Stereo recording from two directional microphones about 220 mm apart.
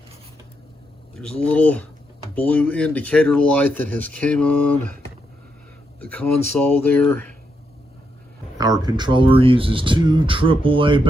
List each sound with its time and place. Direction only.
1.4 s speech: 5° left (ahead or behind)
6.1 s speech: 5° left (ahead or behind)
8.5 s speech: 15° right (ahead or behind)